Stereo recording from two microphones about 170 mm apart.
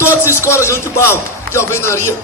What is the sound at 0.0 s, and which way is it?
A man's voice, 15° left (ahead or behind).